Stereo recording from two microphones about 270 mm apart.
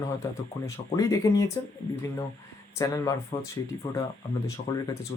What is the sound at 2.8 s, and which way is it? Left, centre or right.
Speech, centre.